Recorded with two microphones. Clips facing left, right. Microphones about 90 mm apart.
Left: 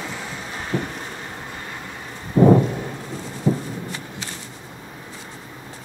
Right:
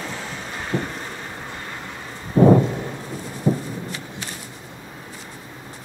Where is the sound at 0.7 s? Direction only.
20° left (ahead or behind).